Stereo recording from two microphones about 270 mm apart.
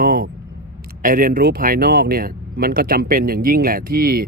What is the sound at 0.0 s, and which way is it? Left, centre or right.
Vehicle, right.